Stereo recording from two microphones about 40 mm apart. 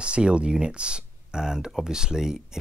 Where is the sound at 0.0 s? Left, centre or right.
Right.